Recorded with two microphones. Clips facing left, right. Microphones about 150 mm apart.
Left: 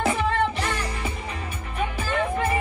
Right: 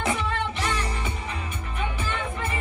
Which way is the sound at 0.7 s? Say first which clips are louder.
Even; 30° right (ahead or behind).